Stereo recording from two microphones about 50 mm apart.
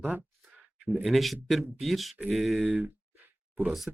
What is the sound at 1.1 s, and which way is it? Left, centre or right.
Speech, centre.